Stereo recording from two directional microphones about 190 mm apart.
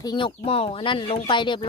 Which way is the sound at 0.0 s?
25° left (ahead or behind).